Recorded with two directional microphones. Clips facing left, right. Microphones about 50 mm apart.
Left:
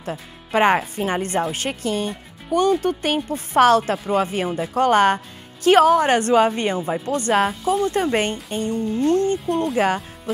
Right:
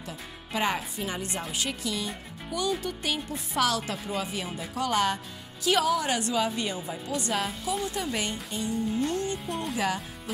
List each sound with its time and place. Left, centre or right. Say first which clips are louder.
0.0 s speech: left 9 dB; left